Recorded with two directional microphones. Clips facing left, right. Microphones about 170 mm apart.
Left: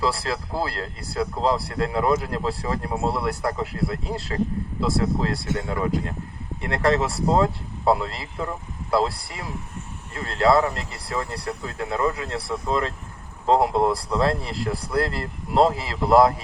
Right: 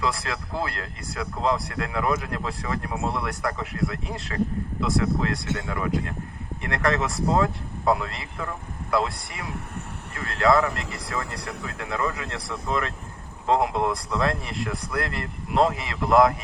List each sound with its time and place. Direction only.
0.0 s speech: 35° left (ahead or behind)
14.1 s speech: 30° left (ahead or behind)